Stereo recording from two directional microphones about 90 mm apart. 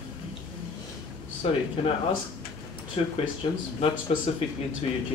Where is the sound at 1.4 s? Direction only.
90° left.